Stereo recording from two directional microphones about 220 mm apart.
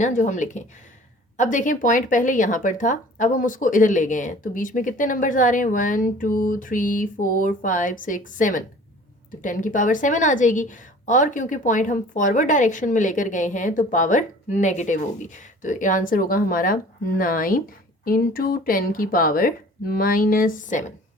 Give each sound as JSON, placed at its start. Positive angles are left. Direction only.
{"t": 0.0, "sound": "a woman's voice", "side_deg": 35}